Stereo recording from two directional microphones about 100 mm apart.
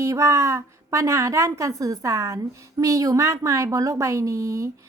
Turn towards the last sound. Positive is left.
turn(degrees=-30)  # may be behind; listen again after turning